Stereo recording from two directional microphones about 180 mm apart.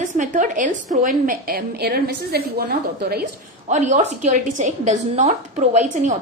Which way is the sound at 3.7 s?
40° right (ahead or behind).